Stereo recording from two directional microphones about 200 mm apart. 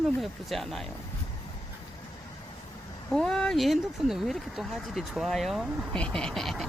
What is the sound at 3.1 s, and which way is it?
Speech, 5° left (ahead or behind).